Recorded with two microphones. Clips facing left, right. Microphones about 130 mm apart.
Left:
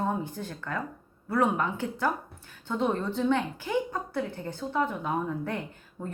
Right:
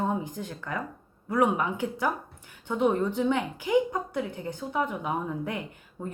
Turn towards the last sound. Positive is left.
turn(degrees=-15)  # may be behind; listen again after turning